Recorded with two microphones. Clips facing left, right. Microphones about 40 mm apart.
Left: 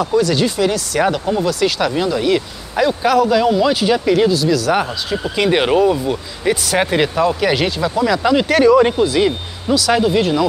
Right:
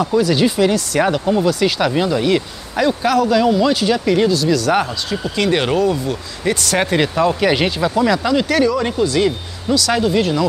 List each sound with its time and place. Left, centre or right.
0.0 s speech: centre
5.2 s speech: centre
8.2 s speech: centre
9.0 s speech: centre